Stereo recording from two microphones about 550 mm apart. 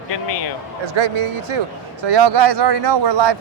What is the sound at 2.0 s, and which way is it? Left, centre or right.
Speech, right.